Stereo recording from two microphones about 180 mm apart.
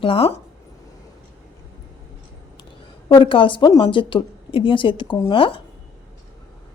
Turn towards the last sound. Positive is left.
turn(degrees=30)  # may be behind; listen again after turning